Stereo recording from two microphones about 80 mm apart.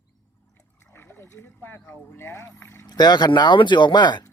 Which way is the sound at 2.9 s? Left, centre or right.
Left.